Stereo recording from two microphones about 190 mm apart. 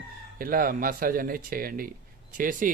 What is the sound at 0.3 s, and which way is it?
Speech, 50° right (ahead or behind).